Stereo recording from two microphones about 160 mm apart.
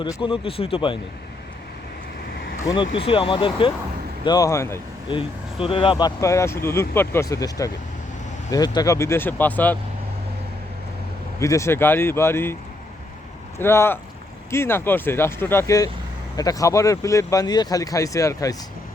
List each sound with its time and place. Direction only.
0.0 s speech: 30° left (ahead or behind)
2.6 s speech: 30° left (ahead or behind)
5.0 s speech: 35° left (ahead or behind); by 9.7 s 10° left (ahead or behind)
11.3 s speech: 20° left (ahead or behind)
13.6 s speech: 15° left (ahead or behind)